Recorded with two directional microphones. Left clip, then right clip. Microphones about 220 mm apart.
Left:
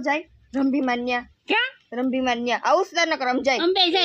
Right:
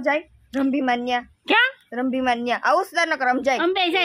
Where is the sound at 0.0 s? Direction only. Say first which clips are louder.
Right 2 dB; 10° right (ahead or behind).